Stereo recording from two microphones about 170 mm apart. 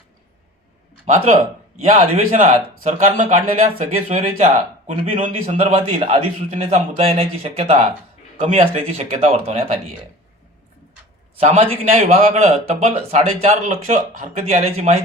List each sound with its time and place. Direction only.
1.0 s a man's voice: 45° right (ahead or behind)
11.3 s a man's voice: 40° right (ahead or behind)